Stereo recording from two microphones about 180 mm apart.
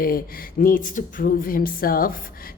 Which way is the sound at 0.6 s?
50° left (ahead or behind).